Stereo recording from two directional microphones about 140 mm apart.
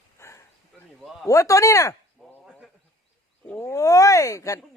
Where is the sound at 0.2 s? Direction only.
20° left (ahead or behind).